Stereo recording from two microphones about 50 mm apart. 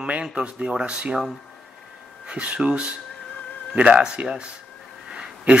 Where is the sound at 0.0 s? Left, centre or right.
Right.